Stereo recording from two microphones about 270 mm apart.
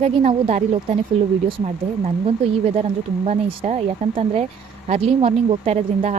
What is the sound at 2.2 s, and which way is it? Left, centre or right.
Speech, right.